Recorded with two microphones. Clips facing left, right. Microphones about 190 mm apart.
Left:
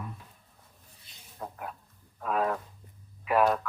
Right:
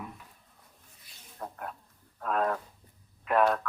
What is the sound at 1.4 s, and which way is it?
Speech, 5° left (ahead or behind).